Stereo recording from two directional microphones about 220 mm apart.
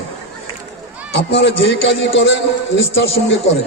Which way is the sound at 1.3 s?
55° left (ahead or behind).